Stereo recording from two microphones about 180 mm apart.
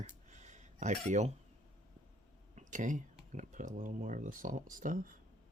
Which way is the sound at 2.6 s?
45° right (ahead or behind).